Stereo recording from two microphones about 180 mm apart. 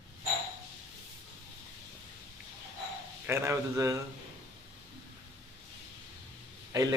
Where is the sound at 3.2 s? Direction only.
15° right (ahead or behind).